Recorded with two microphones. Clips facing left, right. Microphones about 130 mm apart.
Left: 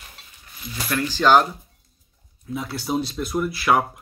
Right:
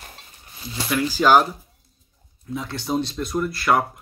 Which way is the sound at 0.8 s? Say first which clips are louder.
Right 1 dB; 10° right (ahead or behind).